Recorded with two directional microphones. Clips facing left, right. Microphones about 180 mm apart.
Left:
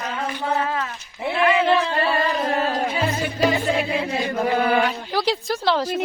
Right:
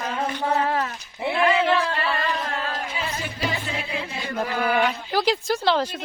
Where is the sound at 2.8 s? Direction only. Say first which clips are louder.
Left 7 dB; 55° left (ahead or behind).